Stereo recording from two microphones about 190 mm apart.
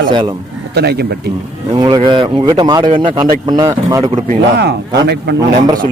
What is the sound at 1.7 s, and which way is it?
Speech, 20° right (ahead or behind).